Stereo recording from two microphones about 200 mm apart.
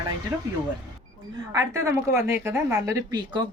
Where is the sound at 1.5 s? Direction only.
15° right (ahead or behind).